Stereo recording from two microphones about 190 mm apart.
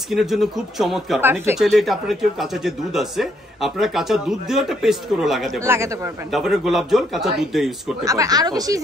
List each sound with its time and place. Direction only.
0.1 s speech: centre (ahead or behind)
1.2 s speech: 10° right (ahead or behind)
1.6 s speech: centre (ahead or behind)
5.6 s speech: 15° right (ahead or behind)
6.3 s speech: centre (ahead or behind)
8.0 s speech: 15° right (ahead or behind)